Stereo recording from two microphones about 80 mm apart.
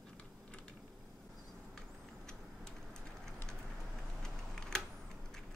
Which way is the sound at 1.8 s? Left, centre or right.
Centre.